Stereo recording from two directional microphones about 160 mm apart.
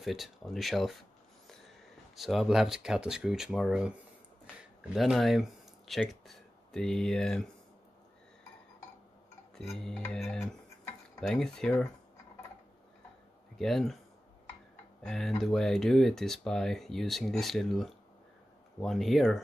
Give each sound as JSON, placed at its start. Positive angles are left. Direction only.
{"t": 0.0, "sound": "speech", "side_deg": 0}
{"t": 2.1, "sound": "speech", "side_deg": 0}
{"t": 4.9, "sound": "speech", "side_deg": 0}
{"t": 9.6, "sound": "speech", "side_deg": 0}
{"t": 13.6, "sound": "speech", "side_deg": 0}
{"t": 15.0, "sound": "speech", "side_deg": 5}